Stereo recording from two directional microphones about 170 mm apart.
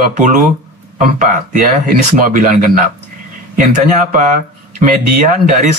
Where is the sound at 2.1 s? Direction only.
50° right (ahead or behind).